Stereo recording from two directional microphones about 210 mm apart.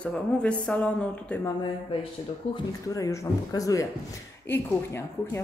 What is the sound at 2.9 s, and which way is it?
Speech, 15° left (ahead or behind).